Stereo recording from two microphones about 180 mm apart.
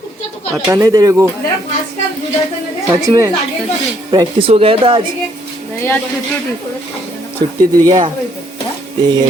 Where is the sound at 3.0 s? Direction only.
20° right (ahead or behind).